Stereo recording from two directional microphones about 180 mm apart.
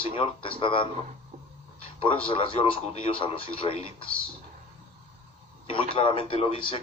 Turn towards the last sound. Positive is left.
turn(degrees=30)  # may be behind; listen again after turning